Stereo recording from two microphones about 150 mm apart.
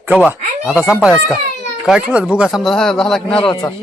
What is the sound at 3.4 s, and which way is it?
Speech, 30° left (ahead or behind).